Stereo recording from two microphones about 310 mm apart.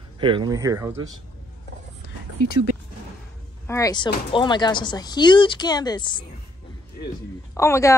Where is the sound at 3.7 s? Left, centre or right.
Centre.